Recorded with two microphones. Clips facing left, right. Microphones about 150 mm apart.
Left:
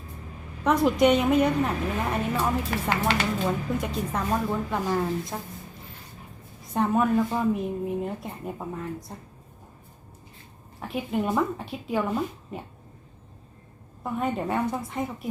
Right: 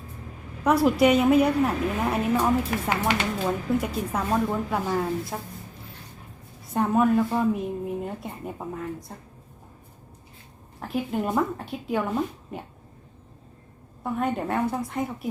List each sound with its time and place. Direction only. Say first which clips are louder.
0.9 s a woman's voice: right 2 dB; 5° right (ahead or behind)
6.7 s a woman's voice: right 2 dB; centre (ahead or behind)
10.8 s a woman's voice: right 1 dB; centre (ahead or behind)
14.0 s a woman's voice: right 1 dB; centre (ahead or behind)